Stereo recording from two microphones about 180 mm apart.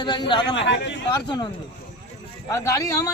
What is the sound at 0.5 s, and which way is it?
Speech, 80° left.